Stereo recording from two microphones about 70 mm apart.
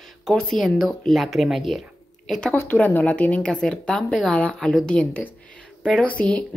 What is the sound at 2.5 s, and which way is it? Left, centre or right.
A woman's voice, left.